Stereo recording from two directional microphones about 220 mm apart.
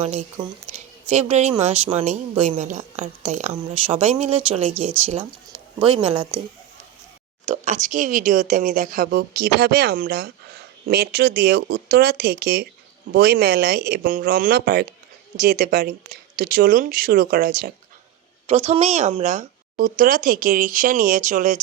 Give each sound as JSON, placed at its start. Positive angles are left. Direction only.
{"t": 0.0, "sound": "a woman's voice", "side_deg": -25}
{"t": 7.4, "sound": "speech", "side_deg": -30}
{"t": 18.4, "sound": "speech", "side_deg": -30}